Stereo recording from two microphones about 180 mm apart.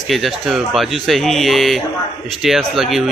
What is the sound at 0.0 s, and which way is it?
Speech, centre (ahead or behind).